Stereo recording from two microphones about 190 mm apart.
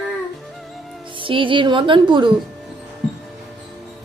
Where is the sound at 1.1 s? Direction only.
25° right (ahead or behind).